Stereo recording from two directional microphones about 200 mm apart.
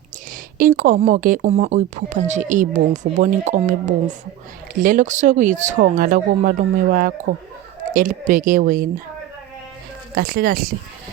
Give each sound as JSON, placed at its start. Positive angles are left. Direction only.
{"t": 0.6, "sound": "speech", "side_deg": -40}
{"t": 10.2, "sound": "speech", "side_deg": -50}